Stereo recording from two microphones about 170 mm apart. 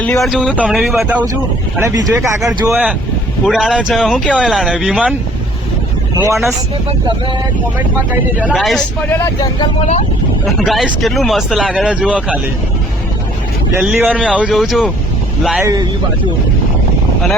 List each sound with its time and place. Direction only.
0.0 s speech: 5° left (ahead or behind)
1.8 s speech: 15° right (ahead or behind)
6.1 s speech: 15° right (ahead or behind)
8.4 s speech: 5° right (ahead or behind)
10.4 s speech: centre (ahead or behind)
13.7 s speech: 5° right (ahead or behind)